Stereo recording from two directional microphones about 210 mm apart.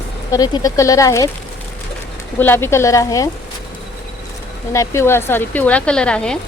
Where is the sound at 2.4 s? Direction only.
10° left (ahead or behind).